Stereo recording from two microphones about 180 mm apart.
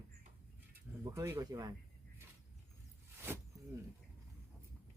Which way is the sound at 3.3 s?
10° right (ahead or behind).